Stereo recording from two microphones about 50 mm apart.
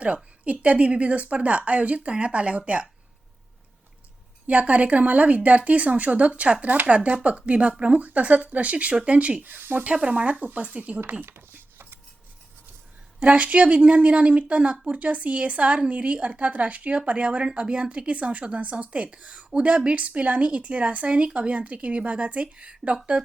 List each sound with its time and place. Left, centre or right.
0.0 s a woman's voice: right
4.4 s a woman's voice: right
9.5 s speech: right
9.8 s a woman's voice: right
11.5 s a sound: right
13.1 s a woman's voice: right